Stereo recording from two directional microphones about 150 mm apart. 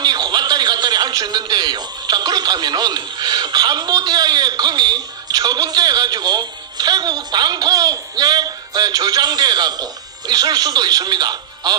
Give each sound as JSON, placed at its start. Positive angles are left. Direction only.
{"t": 0.0, "sound": "a man's voice", "side_deg": -25}